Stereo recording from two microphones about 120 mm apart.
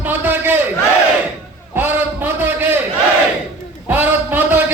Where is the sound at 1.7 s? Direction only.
20° right (ahead or behind).